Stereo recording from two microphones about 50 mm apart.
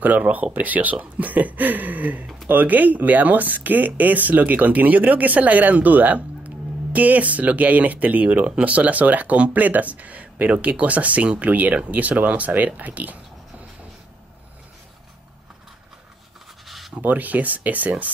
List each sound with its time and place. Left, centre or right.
0.0 s speech: right
16.6 s writing: centre
16.9 s speech: right